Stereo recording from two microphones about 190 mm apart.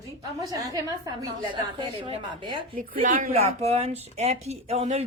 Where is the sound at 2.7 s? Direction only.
45° right (ahead or behind).